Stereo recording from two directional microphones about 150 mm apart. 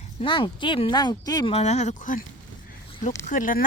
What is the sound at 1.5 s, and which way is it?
Speech, 45° left (ahead or behind).